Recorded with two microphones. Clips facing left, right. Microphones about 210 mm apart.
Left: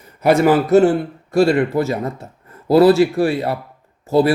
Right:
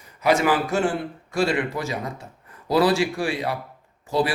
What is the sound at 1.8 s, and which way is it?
Speech, 40° left (ahead or behind).